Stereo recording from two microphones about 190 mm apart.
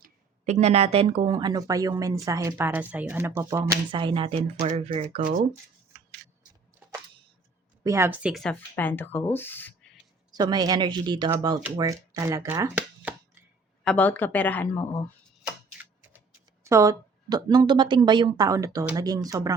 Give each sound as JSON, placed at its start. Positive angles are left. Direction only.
{"t": 0.4, "sound": "speech", "side_deg": -35}
{"t": 3.6, "sound": "speech", "side_deg": -25}
{"t": 7.9, "sound": "speech", "side_deg": -15}
{"t": 8.7, "sound": "speech", "side_deg": 10}
{"t": 10.3, "sound": "speech", "side_deg": -20}
{"t": 13.8, "sound": "speech", "side_deg": 10}
{"t": 16.6, "sound": "speech", "side_deg": -15}